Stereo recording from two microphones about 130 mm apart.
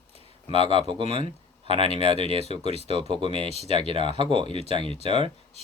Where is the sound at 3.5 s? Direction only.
55° left (ahead or behind).